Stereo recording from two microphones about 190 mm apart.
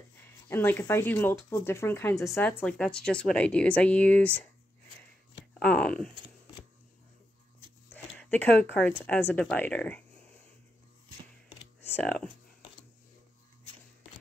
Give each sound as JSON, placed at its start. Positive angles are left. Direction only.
{"t": 0.5, "sound": "speech", "side_deg": 10}
{"t": 5.5, "sound": "speech", "side_deg": 5}
{"t": 8.2, "sound": "speech", "side_deg": 10}
{"t": 11.8, "sound": "speech", "side_deg": 10}